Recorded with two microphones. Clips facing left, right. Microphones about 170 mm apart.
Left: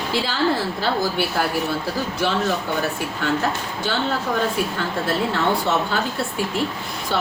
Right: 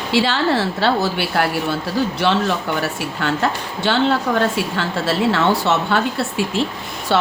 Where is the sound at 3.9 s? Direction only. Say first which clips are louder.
Right 6 dB; 75° right (ahead or behind).